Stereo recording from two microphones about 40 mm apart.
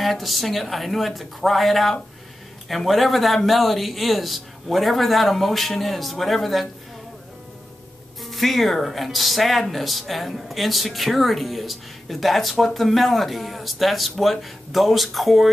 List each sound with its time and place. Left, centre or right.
0.0 s speech: centre
8.2 s speech: centre